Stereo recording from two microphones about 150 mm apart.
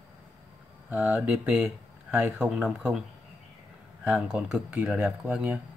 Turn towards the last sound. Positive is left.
turn(degrees=-10)  # may be behind; listen again after turning